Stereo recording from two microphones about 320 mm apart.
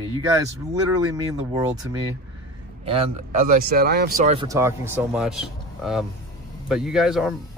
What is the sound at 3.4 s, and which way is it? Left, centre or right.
Speech, right.